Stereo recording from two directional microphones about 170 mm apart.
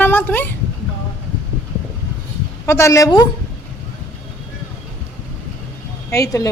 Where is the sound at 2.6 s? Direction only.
15° left (ahead or behind).